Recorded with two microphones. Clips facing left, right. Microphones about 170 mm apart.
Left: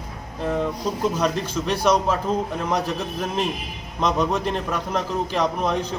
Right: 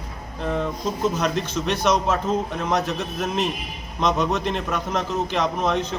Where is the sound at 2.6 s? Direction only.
10° left (ahead or behind).